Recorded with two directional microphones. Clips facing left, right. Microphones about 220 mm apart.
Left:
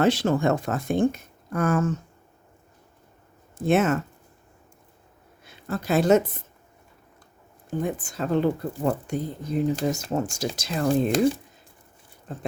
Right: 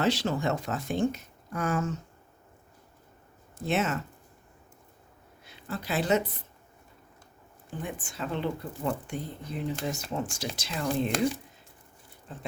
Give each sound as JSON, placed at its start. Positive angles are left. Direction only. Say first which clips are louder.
{"t": 0.0, "sound": "speech", "louder": "left 6 dB", "side_deg": 50}
{"t": 3.7, "sound": "speech", "louder": "left 8 dB", "side_deg": 50}
{"t": 5.5, "sound": "speech", "louder": "left 8 dB", "side_deg": 45}
{"t": 7.7, "sound": "speech", "louder": "left 9 dB", "side_deg": 40}